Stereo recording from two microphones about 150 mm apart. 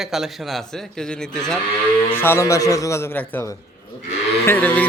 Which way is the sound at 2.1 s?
15° left (ahead or behind).